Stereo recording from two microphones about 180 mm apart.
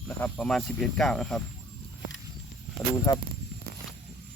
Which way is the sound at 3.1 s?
20° left (ahead or behind).